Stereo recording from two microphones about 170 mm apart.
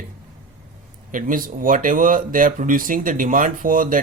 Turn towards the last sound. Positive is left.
turn(degrees=-55)  # may be behind; listen again after turning